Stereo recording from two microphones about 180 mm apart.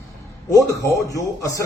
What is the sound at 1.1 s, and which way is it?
Speech, 20° left (ahead or behind).